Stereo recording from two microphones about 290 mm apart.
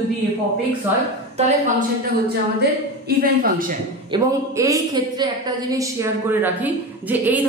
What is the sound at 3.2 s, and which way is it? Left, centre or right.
Speech, right.